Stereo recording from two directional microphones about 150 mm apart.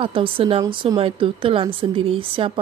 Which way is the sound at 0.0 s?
35° right (ahead or behind).